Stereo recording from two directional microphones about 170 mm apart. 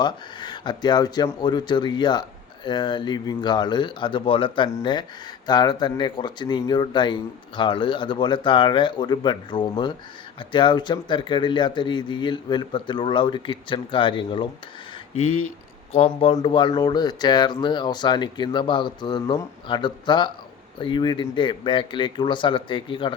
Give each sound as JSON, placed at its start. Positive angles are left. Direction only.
{"t": 0.0, "sound": "speech", "side_deg": 25}
{"t": 15.9, "sound": "speech", "side_deg": 35}